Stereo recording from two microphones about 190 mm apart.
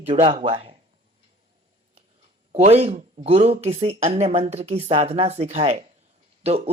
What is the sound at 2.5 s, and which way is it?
A man's voice, 35° right (ahead or behind).